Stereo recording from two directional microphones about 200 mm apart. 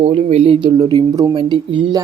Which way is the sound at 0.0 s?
30° right (ahead or behind).